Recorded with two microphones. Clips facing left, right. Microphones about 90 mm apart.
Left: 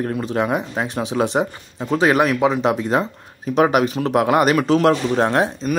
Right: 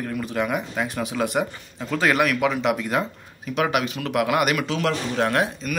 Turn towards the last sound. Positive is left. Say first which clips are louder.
# left 4 dB
turn(degrees=30)  # may be behind; listen again after turning